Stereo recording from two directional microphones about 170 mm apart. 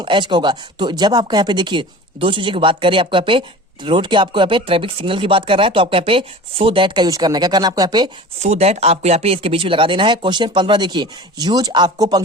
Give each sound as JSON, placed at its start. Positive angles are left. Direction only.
{"t": 0.0, "sound": "speech", "side_deg": -30}
{"t": 8.4, "sound": "speech", "side_deg": -40}